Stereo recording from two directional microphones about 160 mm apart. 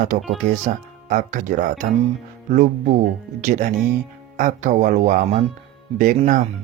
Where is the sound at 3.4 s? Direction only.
55° right (ahead or behind).